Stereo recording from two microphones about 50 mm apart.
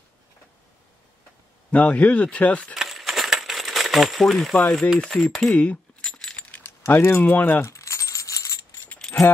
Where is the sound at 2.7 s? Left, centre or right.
Centre.